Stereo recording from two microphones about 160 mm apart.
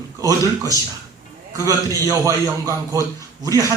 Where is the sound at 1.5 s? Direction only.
20° right (ahead or behind).